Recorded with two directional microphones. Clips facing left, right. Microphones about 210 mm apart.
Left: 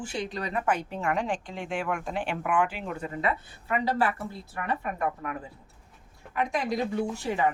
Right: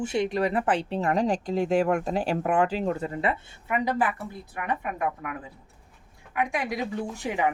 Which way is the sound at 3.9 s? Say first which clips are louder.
Even; 15° right (ahead or behind).